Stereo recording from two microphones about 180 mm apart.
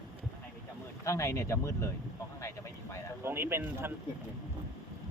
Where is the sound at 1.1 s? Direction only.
15° left (ahead or behind).